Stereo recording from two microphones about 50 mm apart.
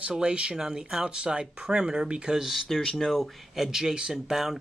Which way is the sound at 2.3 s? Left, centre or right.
Centre.